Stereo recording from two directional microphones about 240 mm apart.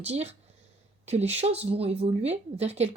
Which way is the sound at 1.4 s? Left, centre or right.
Right.